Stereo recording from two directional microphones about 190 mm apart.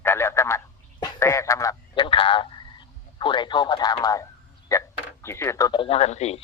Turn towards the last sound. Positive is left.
turn(degrees=35)  # may be behind; listen again after turning